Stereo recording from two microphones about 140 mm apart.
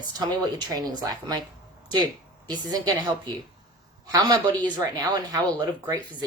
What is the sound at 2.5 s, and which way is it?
A woman's voice, 25° right (ahead or behind).